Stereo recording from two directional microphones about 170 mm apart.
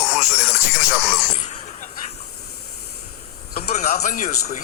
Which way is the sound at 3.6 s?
40° left (ahead or behind).